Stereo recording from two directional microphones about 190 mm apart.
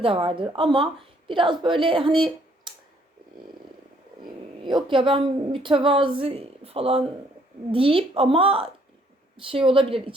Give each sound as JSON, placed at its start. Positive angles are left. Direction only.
{"t": 0.0, "sound": "a woman's voice", "side_deg": -30}
{"t": 4.6, "sound": "a woman's voice", "side_deg": -25}